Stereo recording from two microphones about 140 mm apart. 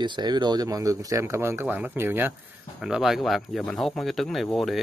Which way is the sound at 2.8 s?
5° right (ahead or behind).